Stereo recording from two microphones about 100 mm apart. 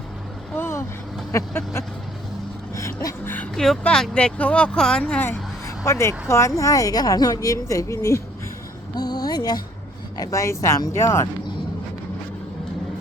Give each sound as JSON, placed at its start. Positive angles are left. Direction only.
{"t": 0.5, "sound": "vehicle", "side_deg": 25}
{"t": 1.3, "sound": "speech", "side_deg": 25}
{"t": 2.7, "sound": "a sound", "side_deg": 30}
{"t": 3.5, "sound": "speech", "side_deg": 5}
{"t": 5.6, "sound": "speech", "side_deg": 30}
{"t": 9.0, "sound": "a sound", "side_deg": 40}
{"t": 10.2, "sound": "speech", "side_deg": 30}